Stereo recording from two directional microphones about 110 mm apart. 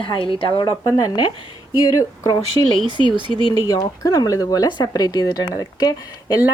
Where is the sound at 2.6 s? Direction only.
30° left (ahead or behind).